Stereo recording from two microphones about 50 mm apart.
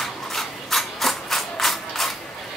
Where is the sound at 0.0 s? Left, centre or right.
Centre.